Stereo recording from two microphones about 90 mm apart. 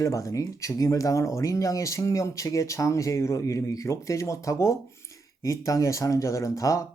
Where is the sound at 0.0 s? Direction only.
35° left (ahead or behind).